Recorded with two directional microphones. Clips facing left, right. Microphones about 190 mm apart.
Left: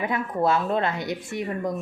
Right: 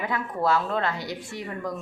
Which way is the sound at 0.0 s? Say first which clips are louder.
Left 3 dB; 20° left (ahead or behind).